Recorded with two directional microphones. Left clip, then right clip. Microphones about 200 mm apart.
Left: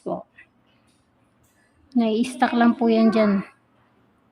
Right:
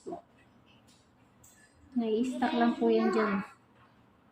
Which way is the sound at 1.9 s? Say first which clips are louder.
Left 9 dB; 60° left (ahead or behind).